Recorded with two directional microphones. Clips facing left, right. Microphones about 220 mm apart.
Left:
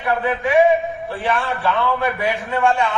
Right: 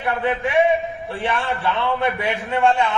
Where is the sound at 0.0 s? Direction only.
25° right (ahead or behind).